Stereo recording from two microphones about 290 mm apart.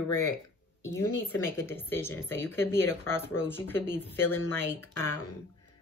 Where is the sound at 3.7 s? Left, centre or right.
Right.